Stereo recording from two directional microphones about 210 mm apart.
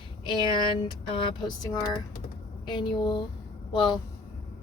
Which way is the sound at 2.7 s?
20° left (ahead or behind).